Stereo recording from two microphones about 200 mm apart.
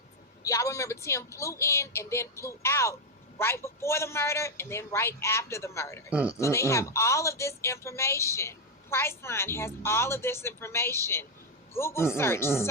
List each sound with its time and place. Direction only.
0.4 s a woman's voice: 15° left (ahead or behind)
6.1 s speech: 5° right (ahead or behind)
6.3 s a woman's voice: 15° left (ahead or behind)